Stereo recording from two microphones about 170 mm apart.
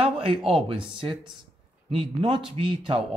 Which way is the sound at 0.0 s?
30° right (ahead or behind).